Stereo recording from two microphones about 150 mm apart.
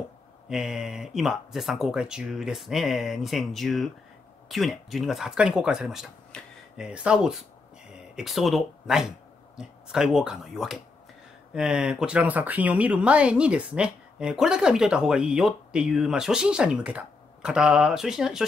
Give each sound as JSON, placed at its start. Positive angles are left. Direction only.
{"t": 0.5, "sound": "speech", "side_deg": -5}